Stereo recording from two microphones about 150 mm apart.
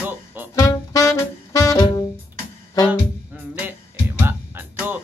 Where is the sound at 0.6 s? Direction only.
20° left (ahead or behind).